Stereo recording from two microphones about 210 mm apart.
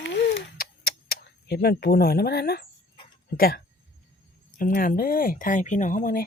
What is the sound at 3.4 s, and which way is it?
Speech, 45° left (ahead or behind).